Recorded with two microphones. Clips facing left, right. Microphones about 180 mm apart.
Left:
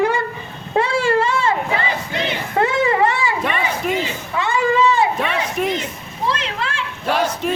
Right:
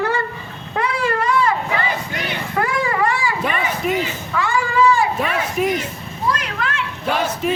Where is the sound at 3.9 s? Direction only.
20° left (ahead or behind).